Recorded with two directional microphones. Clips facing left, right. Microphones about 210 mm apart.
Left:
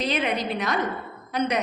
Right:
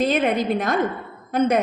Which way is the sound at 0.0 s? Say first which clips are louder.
Right 6 dB; 50° right (ahead or behind).